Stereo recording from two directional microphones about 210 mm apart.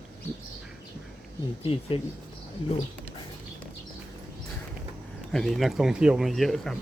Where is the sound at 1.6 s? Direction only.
25° left (ahead or behind).